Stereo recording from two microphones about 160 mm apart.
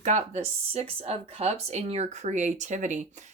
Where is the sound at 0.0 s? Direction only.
45° right (ahead or behind).